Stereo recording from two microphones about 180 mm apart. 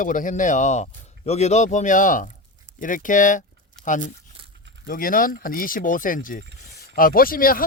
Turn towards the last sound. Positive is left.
turn(degrees=50)  # may be behind; listen again after turning